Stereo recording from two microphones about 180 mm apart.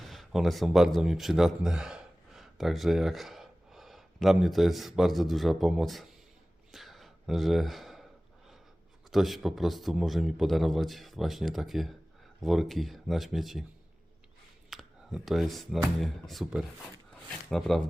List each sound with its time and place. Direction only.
0.0 s speech: centre (ahead or behind)
6.7 s a sound: centre (ahead or behind)
9.0 s a man's voice: centre (ahead or behind)
14.7 s a man's voice: centre (ahead or behind)